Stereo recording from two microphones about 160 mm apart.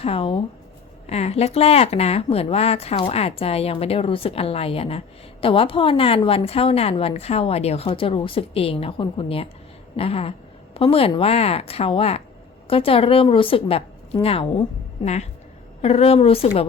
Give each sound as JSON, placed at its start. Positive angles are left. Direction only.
{"t": 0.0, "sound": "a woman's voice", "side_deg": 35}